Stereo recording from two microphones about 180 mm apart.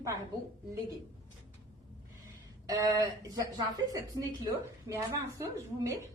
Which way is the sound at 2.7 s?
20° right (ahead or behind).